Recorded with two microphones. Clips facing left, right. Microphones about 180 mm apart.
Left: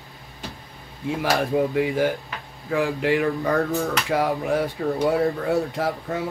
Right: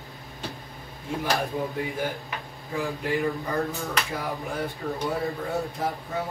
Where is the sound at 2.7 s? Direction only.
85° left.